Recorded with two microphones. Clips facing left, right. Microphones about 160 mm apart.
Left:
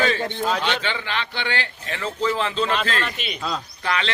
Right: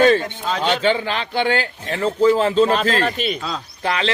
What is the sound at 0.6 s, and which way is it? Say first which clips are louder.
A man's voice: right 7 dB; 35° right (ahead or behind).